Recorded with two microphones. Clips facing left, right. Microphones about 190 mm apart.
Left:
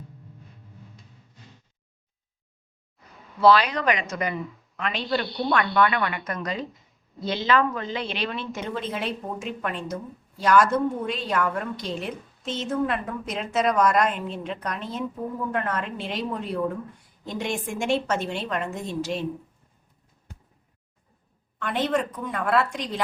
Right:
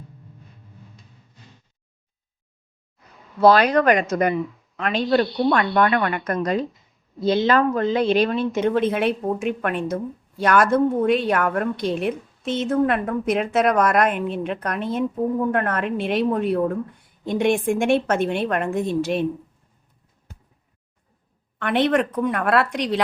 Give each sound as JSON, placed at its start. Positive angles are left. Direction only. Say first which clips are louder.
{"t": 3.4, "sound": "a woman's voice", "louder": "right 4 dB", "side_deg": -45}
{"t": 8.7, "sound": "a woman's voice", "louder": "right 9 dB", "side_deg": -60}
{"t": 21.6, "sound": "a woman's voice", "louder": "right 6 dB", "side_deg": -70}